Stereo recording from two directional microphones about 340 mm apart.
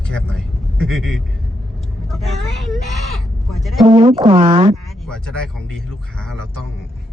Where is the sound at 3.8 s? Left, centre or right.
Centre.